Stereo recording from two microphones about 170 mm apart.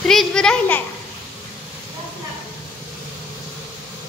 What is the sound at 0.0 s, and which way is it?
Speech, 5° left (ahead or behind).